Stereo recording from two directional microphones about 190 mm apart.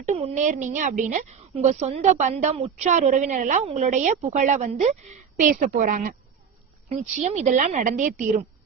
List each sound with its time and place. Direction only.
0.0 s a woman's voice: 35° right (ahead or behind)